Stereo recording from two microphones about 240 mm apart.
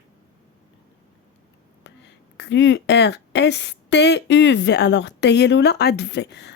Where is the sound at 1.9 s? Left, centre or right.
Left.